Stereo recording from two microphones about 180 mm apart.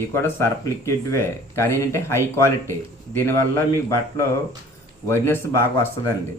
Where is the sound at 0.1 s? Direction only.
15° left (ahead or behind).